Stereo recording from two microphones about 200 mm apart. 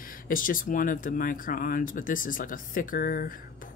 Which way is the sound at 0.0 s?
45° left (ahead or behind).